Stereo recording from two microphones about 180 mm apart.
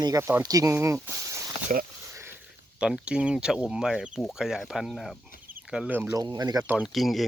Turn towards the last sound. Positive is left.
turn(degrees=0)  # may be behind; listen again after turning